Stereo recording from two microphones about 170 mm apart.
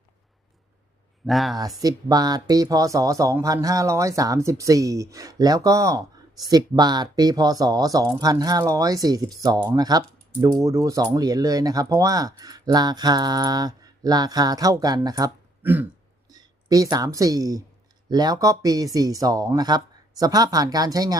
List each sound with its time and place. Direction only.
1.2 s speech: centre (ahead or behind)
1.5 s speech: 20° right (ahead or behind)
15.6 s throat clearing: 10° right (ahead or behind)
16.3 s speech: 20° right (ahead or behind)